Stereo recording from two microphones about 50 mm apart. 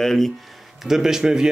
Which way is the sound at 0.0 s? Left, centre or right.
Centre.